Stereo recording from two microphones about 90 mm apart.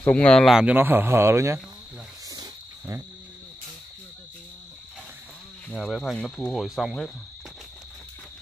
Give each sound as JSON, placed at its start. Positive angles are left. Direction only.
{"t": 0.0, "sound": "speech", "side_deg": 15}
{"t": 0.5, "sound": "speech", "side_deg": -5}
{"t": 0.7, "sound": "a man's voice", "side_deg": -25}
{"t": 2.2, "sound": "cricket", "side_deg": -45}
{"t": 5.7, "sound": "speech", "side_deg": 5}